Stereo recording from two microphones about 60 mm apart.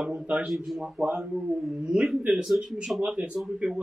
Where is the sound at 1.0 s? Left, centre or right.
Right.